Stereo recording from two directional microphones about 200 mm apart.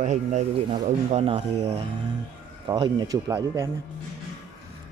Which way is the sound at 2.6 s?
20° right (ahead or behind).